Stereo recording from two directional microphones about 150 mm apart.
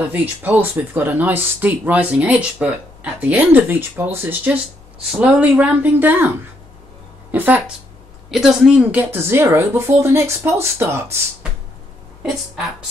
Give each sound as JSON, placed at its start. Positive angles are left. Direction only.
{"t": 0.0, "sound": "speech", "side_deg": -10}